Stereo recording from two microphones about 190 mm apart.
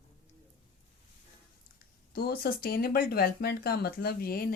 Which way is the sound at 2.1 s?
55° left (ahead or behind).